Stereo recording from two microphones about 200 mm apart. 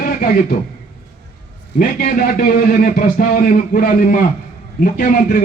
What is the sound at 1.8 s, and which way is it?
A man's voice, 50° left (ahead or behind).